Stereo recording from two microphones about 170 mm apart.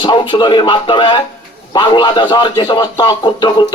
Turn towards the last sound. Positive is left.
turn(degrees=25)  # may be behind; listen again after turning